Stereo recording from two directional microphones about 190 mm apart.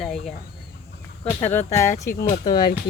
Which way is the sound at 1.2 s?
35° left (ahead or behind).